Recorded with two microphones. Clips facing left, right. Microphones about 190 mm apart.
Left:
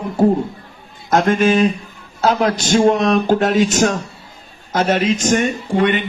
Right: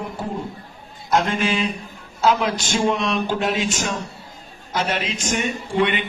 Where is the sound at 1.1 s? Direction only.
50° left (ahead or behind).